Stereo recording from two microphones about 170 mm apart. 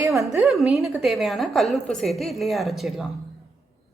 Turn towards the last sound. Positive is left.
turn(degrees=0)  # may be behind; listen again after turning